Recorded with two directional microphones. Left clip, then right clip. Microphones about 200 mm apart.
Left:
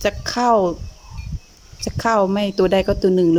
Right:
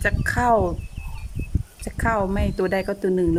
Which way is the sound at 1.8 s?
10° left (ahead or behind).